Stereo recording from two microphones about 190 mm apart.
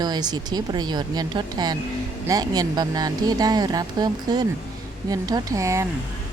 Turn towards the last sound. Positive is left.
turn(degrees=-15)  # may be behind; listen again after turning